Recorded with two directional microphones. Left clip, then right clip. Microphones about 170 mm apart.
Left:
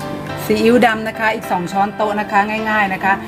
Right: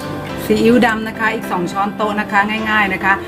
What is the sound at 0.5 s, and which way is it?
Speech, 45° left (ahead or behind).